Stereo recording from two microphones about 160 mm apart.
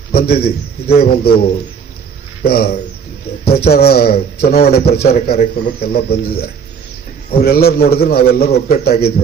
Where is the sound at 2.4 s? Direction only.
75° left (ahead or behind).